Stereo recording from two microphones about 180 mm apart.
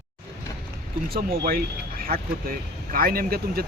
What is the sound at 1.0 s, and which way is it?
Speech, 55° right (ahead or behind).